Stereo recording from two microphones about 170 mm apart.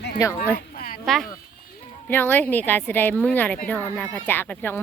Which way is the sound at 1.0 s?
Centre (ahead or behind).